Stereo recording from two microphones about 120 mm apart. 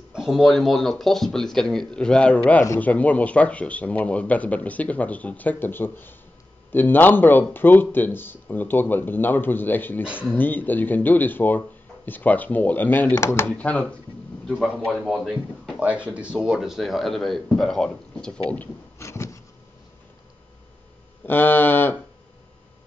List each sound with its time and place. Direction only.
0.1 s speech: 5° right (ahead or behind)
15.8 s speech: 10° right (ahead or behind); by 18.3 s 5° left (ahead or behind)
18.9 s a sound: 25° left (ahead or behind)
21.3 s speech: 15° left (ahead or behind)